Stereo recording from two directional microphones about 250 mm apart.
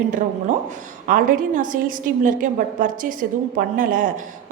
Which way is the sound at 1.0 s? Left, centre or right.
Right.